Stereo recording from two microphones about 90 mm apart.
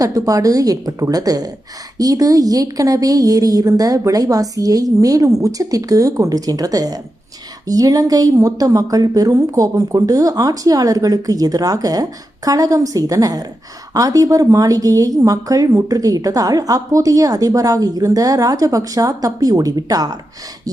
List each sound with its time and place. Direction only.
0.0 s a woman's voice: 40° right (ahead or behind)